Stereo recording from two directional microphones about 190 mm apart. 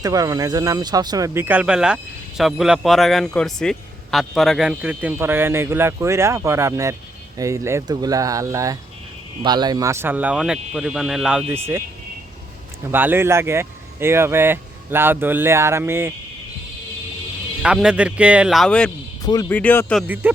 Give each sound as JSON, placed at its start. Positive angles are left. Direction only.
{"t": 0.0, "sound": "a man's voice", "side_deg": -20}
{"t": 12.8, "sound": "a man's voice", "side_deg": -10}
{"t": 17.6, "sound": "speech", "side_deg": -5}
{"t": 19.2, "sound": "speech", "side_deg": 20}
{"t": 20.0, "sound": "a man's voice", "side_deg": -10}